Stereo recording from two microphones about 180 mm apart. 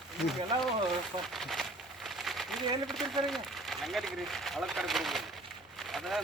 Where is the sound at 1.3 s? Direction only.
Centre (ahead or behind).